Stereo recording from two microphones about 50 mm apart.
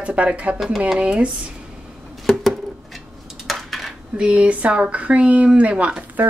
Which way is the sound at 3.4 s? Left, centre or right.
Centre.